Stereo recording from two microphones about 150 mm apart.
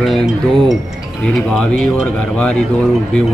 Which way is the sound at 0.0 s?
Centre (ahead or behind).